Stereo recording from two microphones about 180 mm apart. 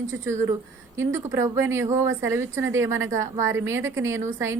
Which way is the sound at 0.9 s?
15° right (ahead or behind).